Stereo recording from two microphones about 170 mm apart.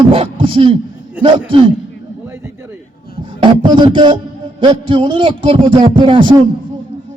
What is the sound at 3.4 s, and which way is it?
A man's voice, 30° right (ahead or behind).